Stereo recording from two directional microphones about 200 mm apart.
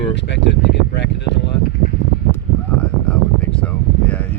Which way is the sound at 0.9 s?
60° left (ahead or behind).